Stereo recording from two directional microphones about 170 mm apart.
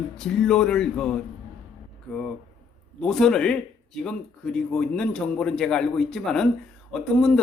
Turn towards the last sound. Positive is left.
turn(degrees=5)  # may be behind; listen again after turning